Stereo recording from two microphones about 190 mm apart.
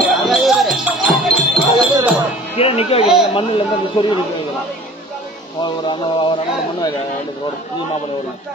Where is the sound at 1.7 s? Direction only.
25° right (ahead or behind).